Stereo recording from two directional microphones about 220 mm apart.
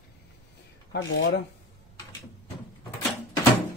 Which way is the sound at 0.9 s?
55° left (ahead or behind).